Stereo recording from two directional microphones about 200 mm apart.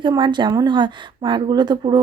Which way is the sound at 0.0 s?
25° right (ahead or behind).